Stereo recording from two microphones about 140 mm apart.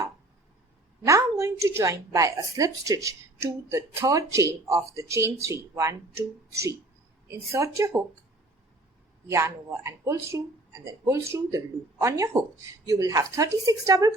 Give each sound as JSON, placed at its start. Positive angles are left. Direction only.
{"t": 1.0, "sound": "a woman's voice", "side_deg": -20}
{"t": 9.3, "sound": "a woman's voice", "side_deg": -20}